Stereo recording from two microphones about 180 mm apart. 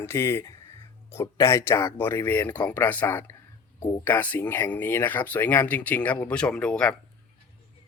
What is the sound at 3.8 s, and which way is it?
Speech, 25° left (ahead or behind).